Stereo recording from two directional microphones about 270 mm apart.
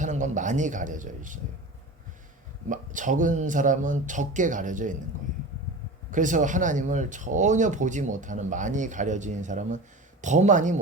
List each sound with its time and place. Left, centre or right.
0.0 s speech: right
2.6 s speech: right
6.1 s speech: right